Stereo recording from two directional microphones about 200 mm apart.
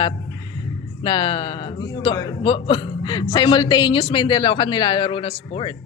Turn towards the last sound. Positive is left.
turn(degrees=25)  # may be behind; listen again after turning